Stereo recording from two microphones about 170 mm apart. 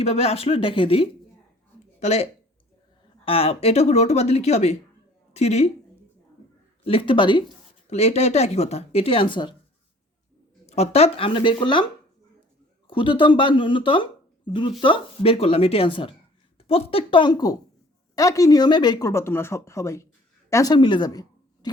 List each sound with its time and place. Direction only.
0.0 s speech: 35° left (ahead or behind)
3.2 s a woman's voice: 35° left (ahead or behind)
6.8 s speech: 30° left (ahead or behind)
7.9 s speech: 40° left (ahead or behind)
10.7 s speech: 40° left (ahead or behind)
12.9 s speech: 30° left (ahead or behind)